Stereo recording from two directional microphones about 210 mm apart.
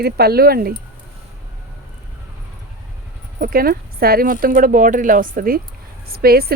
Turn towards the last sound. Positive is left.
turn(degrees=-45)  # may be behind; listen again after turning